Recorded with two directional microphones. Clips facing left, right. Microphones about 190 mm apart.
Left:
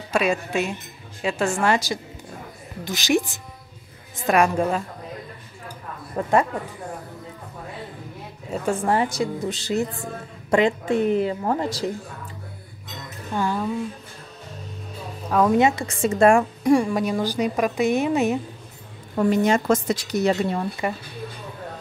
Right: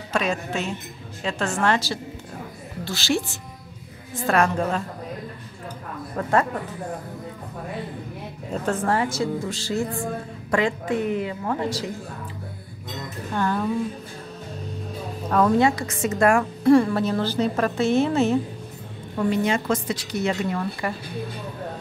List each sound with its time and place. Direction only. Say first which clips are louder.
0.1 s a woman's voice: left 3 dB; 10° left (ahead or behind)
6.2 s a woman's voice: left 2 dB; 15° left (ahead or behind)
8.5 s a woman's voice: left 1 dB; 10° left (ahead or behind); by 11.5 s 35° left (ahead or behind)
13.3 s a woman's voice: even; 10° left (ahead or behind)
15.2 s a woman's voice: even; 5° left (ahead or behind)
15.5 s a woman's voice: left 1 dB; 25° left (ahead or behind)
16.6 s a woman's voice: right 5 dB; 15° left (ahead or behind)
19.1 s a woman's voice: left 3 dB; 45° left (ahead or behind)
20.8 s a woman's voice: left 4 dB; 20° left (ahead or behind)